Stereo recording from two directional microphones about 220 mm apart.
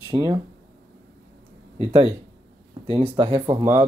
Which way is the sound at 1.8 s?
25° right (ahead or behind).